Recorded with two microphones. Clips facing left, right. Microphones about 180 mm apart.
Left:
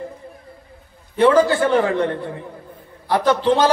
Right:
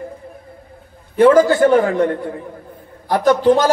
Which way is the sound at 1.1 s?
45° right (ahead or behind).